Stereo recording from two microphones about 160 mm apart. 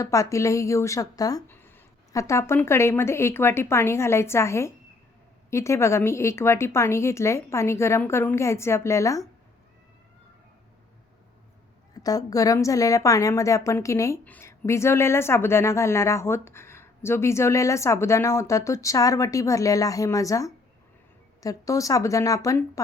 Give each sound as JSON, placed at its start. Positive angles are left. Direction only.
{"t": 0.0, "sound": "a woman's voice", "side_deg": 20}
{"t": 12.0, "sound": "a woman's voice", "side_deg": 20}